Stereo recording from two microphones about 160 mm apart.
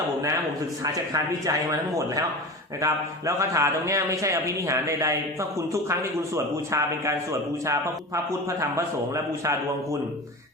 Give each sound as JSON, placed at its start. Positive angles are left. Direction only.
{"t": 1.1, "sound": "a man's voice", "side_deg": -20}